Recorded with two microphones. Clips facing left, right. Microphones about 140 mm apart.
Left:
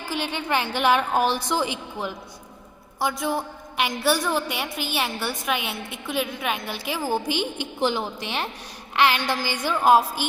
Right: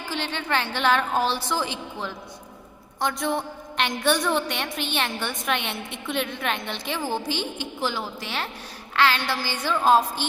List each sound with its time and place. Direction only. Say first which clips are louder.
0.0 s a woman's voice: left 2 dB; 10° left (ahead or behind)